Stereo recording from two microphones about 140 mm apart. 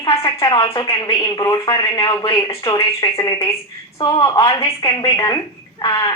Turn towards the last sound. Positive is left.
turn(degrees=30)  # may be behind; listen again after turning